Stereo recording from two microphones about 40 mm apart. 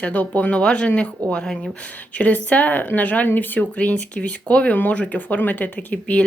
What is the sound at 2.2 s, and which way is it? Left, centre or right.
Speech, left.